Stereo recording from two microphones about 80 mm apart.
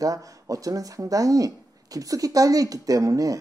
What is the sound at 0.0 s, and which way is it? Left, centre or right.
Speech, right.